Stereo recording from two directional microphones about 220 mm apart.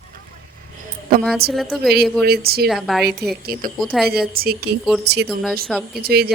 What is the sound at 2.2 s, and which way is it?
Speech, 45° right (ahead or behind).